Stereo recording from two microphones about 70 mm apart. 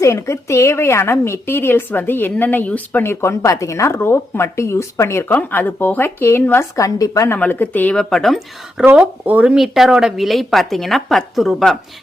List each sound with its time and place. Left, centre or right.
0.0 s a woman's voice: left
3.0 s speech: left
5.3 s speech: left
6.7 s speech: left
7.3 s speech: left
7.9 s speech: centre
9.0 s speech: right
9.6 s a woman's voice: centre